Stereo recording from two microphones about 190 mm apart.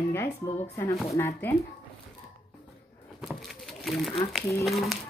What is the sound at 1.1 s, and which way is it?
Speech, 10° left (ahead or behind).